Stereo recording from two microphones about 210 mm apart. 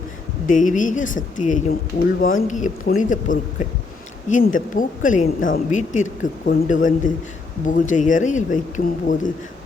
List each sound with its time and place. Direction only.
0.4 s speech: 40° left (ahead or behind)